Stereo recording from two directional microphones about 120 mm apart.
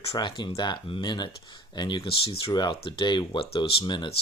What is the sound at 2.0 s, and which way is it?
Speech, 50° left (ahead or behind).